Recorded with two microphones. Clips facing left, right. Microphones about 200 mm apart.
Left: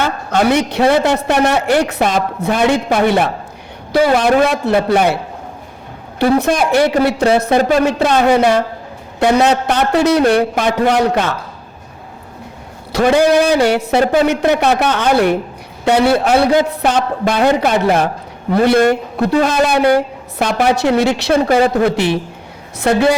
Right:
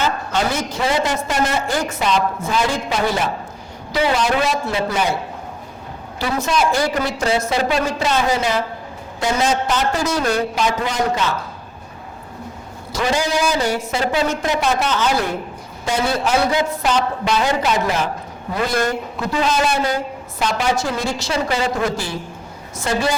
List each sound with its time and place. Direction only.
0.0 s a man's voice: 60° left (ahead or behind)
6.1 s a man's voice: 55° left (ahead or behind)
12.9 s a man's voice: 60° left (ahead or behind)